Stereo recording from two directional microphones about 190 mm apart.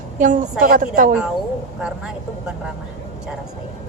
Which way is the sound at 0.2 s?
40° right (ahead or behind).